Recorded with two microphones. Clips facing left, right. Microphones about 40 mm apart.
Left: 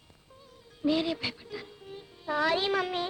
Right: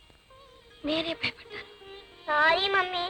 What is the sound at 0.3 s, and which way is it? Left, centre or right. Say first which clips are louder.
Music: right 1 dB; right.